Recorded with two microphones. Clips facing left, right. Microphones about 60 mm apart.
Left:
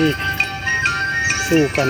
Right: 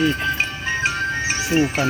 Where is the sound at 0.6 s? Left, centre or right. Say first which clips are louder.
Left 4 dB; left.